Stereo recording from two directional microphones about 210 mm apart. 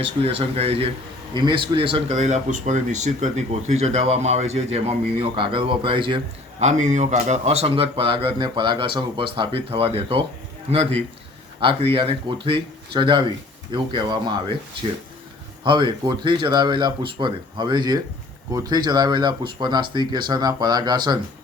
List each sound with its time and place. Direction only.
0.0 s speech: 25° right (ahead or behind)
15.6 s speech: 20° right (ahead or behind)